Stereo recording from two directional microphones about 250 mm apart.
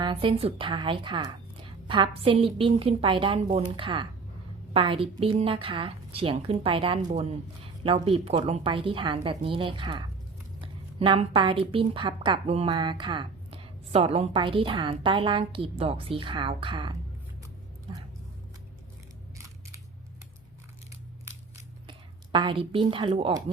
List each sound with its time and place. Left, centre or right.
0.0 s a woman's voice: right
21.8 s speech: centre